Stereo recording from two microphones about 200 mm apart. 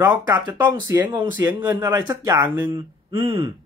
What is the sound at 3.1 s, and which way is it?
Speech, 30° right (ahead or behind).